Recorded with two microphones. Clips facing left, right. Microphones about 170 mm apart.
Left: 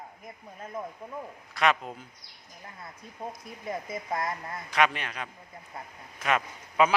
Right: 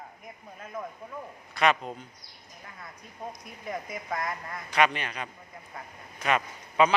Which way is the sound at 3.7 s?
25° left (ahead or behind).